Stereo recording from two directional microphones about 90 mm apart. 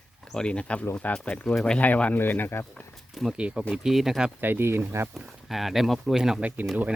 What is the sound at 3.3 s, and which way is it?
Speech, 10° right (ahead or behind).